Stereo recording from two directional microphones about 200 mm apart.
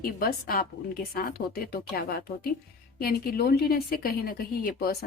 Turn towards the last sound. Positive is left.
turn(degrees=50)  # may be behind; listen again after turning